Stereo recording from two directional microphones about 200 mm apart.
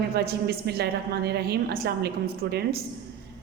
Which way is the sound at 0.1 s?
50° right (ahead or behind).